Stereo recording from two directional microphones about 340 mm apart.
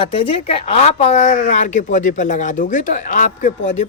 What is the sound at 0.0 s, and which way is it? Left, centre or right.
A man's voice, centre.